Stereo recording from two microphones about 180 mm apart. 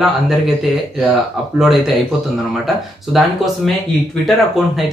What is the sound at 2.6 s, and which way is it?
Speech, centre (ahead or behind).